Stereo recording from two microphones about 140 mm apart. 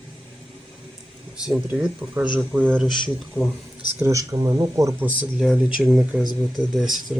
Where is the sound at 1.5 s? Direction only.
10° right (ahead or behind).